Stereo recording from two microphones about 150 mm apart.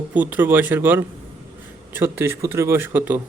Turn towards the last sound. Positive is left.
turn(degrees=-15)  # may be behind; listen again after turning